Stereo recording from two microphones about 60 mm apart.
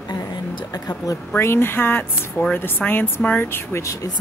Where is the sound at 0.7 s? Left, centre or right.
Left.